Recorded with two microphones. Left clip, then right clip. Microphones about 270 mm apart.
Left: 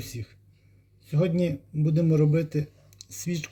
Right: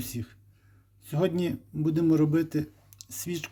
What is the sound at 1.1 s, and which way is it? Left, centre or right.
Speech, right.